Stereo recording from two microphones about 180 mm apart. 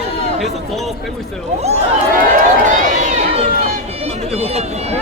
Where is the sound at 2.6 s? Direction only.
45° right (ahead or behind).